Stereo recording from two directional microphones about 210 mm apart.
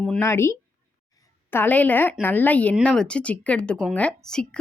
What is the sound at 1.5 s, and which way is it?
A woman's voice, 10° left (ahead or behind).